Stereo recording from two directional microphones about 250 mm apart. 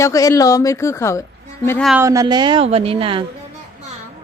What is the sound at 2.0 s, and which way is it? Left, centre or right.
Speech, centre.